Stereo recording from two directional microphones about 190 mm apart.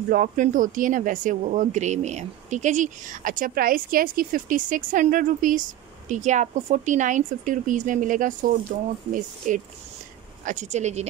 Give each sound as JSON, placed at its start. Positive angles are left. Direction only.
{"t": 0.1, "sound": "speech", "side_deg": -45}
{"t": 9.5, "sound": "speech", "side_deg": -45}